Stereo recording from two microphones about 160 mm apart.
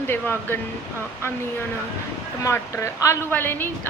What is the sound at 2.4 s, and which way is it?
Speech, 15° left (ahead or behind).